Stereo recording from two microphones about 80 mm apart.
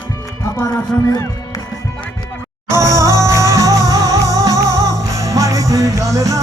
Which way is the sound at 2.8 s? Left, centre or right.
Right.